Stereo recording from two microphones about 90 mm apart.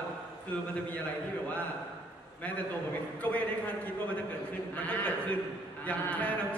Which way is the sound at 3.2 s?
15° left (ahead or behind).